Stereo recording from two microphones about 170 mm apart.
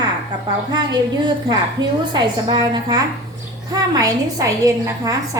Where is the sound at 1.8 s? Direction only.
25° right (ahead or behind).